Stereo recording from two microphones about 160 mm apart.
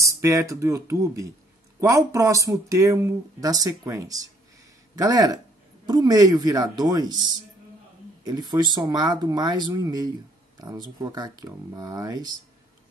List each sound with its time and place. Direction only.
0.0 s speech: 20° right (ahead or behind)